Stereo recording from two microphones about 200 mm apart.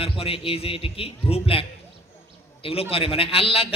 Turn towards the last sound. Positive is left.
turn(degrees=30)  # may be behind; listen again after turning